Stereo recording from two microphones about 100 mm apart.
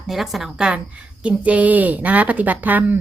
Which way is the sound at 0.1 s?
Centre (ahead or behind).